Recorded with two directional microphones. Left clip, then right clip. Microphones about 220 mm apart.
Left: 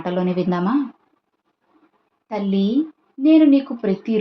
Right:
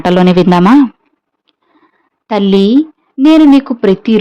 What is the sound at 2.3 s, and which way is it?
Speech, 50° right (ahead or behind).